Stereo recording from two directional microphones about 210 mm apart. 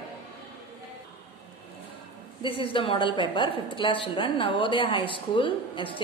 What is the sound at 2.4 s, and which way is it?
A woman's voice, 25° left (ahead or behind).